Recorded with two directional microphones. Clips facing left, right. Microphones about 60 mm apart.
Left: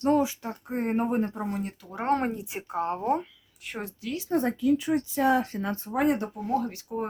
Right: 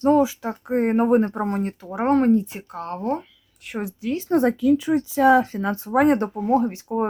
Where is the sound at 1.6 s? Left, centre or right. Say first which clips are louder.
Right 7 dB; right.